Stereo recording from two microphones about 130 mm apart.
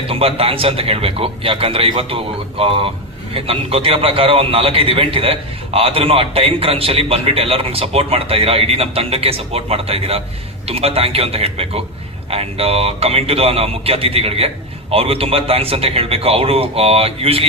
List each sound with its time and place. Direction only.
0.1 s a man's voice: 45° right (ahead or behind)